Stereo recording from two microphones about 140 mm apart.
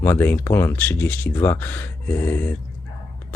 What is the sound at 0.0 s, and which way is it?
Speech, 15° left (ahead or behind).